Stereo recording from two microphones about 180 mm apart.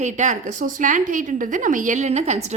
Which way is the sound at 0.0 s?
40° right (ahead or behind).